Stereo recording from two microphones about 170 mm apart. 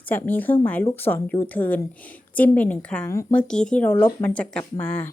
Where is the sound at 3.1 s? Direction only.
20° left (ahead or behind).